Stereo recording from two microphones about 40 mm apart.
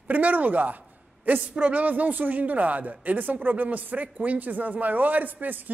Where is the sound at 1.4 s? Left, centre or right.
Right.